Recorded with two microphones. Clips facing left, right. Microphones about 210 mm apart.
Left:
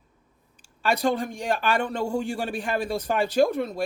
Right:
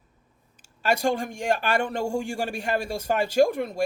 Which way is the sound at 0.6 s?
45° right (ahead or behind).